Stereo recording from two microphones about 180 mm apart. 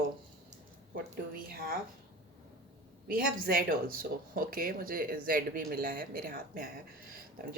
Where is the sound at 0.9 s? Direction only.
55° right (ahead or behind).